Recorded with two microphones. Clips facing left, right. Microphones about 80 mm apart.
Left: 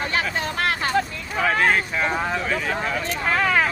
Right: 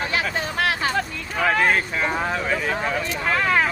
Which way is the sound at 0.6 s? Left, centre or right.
Left.